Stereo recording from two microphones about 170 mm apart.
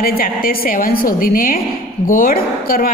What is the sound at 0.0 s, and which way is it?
A woman's voice, 60° left (ahead or behind).